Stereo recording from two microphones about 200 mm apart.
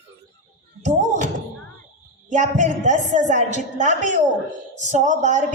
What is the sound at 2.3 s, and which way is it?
A woman's voice, 35° right (ahead or behind).